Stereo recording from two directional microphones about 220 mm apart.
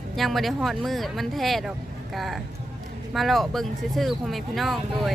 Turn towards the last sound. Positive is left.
turn(degrees=0)  # may be behind; listen again after turning